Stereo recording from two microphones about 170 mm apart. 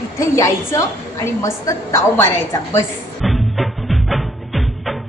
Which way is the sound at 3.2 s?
Centre (ahead or behind).